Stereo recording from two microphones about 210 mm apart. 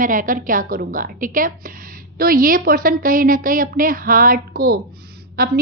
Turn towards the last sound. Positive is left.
turn(degrees=-45)  # may be behind; listen again after turning